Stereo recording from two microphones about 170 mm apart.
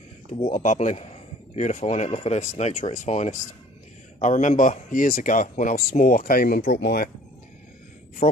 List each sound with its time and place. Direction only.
0.3 s speech: 45° left (ahead or behind)